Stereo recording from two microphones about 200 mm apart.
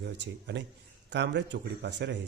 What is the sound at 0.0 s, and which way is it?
Speech, 60° right (ahead or behind).